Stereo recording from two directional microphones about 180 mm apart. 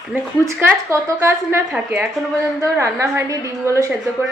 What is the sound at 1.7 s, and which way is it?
Speech, 5° right (ahead or behind).